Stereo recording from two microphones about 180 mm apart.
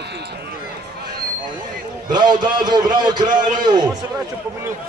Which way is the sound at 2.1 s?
25° right (ahead or behind).